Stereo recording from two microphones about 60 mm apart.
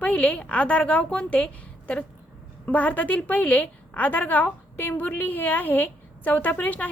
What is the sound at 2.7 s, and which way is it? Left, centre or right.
A woman's voice, left.